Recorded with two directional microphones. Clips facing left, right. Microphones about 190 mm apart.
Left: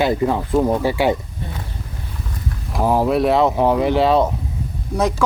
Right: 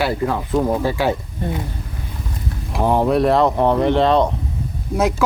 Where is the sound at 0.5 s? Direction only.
5° left (ahead or behind).